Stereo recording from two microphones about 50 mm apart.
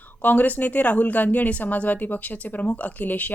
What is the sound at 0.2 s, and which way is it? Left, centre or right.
Speech, left.